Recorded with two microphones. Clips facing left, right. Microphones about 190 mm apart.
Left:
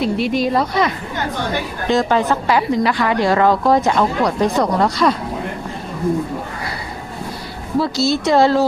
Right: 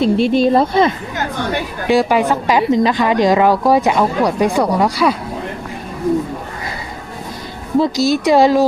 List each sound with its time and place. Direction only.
0.0 s speech: 30° right (ahead or behind)
1.9 s a woman's voice: 10° right (ahead or behind)
7.8 s a woman's voice: 15° right (ahead or behind)